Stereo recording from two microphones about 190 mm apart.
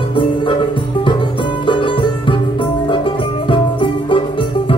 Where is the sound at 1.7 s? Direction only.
25° left (ahead or behind).